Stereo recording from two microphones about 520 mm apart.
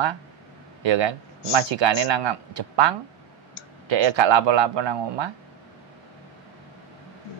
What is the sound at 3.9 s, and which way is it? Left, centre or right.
A man's voice, right.